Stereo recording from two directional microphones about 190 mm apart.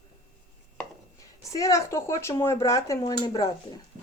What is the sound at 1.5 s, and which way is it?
Speech, 20° left (ahead or behind).